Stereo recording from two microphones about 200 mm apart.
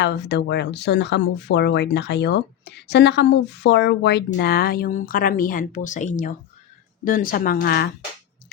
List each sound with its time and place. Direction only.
0.0 s a woman's voice: 60° left (ahead or behind)